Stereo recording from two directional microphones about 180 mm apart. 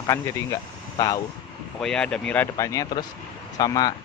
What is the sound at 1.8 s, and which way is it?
Speech, 5° left (ahead or behind).